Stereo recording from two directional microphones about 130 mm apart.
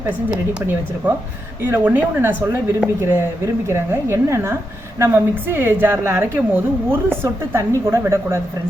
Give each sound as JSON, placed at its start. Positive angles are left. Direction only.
{"t": 1.0, "sound": "speech", "side_deg": -10}